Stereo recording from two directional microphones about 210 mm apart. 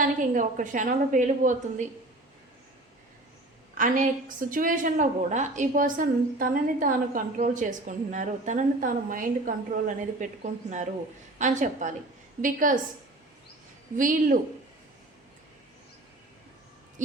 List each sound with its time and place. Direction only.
0.0 s a woman's voice: 40° right (ahead or behind)
3.8 s a woman's voice: 40° right (ahead or behind)
13.9 s a woman's voice: 40° right (ahead or behind)